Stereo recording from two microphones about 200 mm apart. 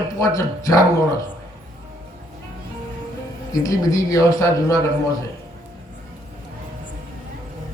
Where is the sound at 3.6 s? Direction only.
15° left (ahead or behind).